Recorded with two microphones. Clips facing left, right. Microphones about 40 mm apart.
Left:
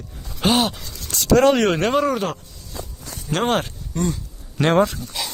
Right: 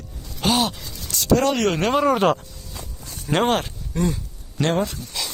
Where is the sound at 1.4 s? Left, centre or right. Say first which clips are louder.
Left 5 dB; left.